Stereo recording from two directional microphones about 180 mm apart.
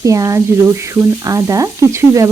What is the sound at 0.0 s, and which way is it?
Speech, 20° right (ahead or behind).